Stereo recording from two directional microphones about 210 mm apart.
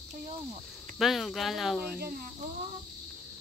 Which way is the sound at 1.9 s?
45° right (ahead or behind).